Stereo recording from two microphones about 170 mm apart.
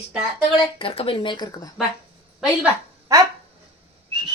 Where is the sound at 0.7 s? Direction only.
35° left (ahead or behind).